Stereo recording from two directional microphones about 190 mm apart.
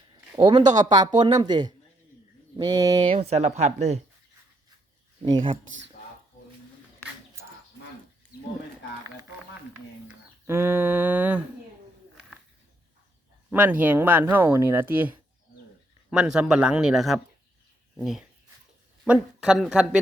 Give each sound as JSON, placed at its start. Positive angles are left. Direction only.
{"t": 0.3, "sound": "speech", "side_deg": -25}
{"t": 3.2, "sound": "speech", "side_deg": -35}
{"t": 5.2, "sound": "speech", "side_deg": -25}
{"t": 10.4, "sound": "speech", "side_deg": -10}
{"t": 13.5, "sound": "speech", "side_deg": -10}